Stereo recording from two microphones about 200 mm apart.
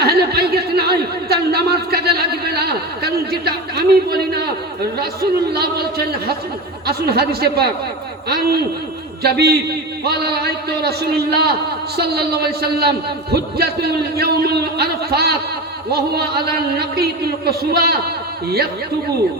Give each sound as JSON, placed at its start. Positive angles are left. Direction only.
{"t": 0.0, "sound": "a sound", "side_deg": -50}
{"t": 4.9, "sound": "a man's voice", "side_deg": -50}
{"t": 9.2, "sound": "a man's voice", "side_deg": -55}